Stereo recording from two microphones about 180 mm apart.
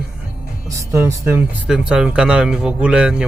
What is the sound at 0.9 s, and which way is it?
Speech, 15° right (ahead or behind).